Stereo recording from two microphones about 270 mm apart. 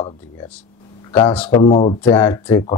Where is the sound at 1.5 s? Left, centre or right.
Centre.